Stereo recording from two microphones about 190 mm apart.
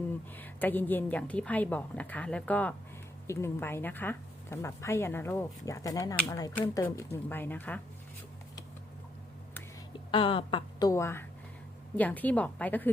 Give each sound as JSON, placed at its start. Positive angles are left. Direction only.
{"t": 0.3, "sound": "speech", "side_deg": 10}
{"t": 10.1, "sound": "speech", "side_deg": 30}